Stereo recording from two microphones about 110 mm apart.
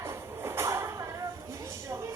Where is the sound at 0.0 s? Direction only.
25° right (ahead or behind).